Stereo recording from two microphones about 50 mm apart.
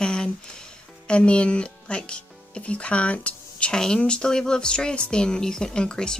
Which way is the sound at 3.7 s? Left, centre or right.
Centre.